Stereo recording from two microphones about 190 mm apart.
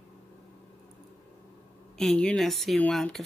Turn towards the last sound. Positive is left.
turn(degrees=0)  # may be behind; listen again after turning